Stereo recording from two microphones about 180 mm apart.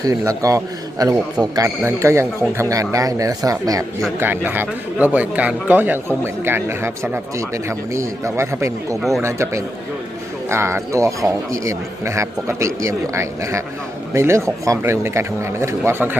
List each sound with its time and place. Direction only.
0.0 s a man's voice: 20° right (ahead or behind)
9.0 s speech: centre (ahead or behind)
9.2 s a man's voice: 15° right (ahead or behind)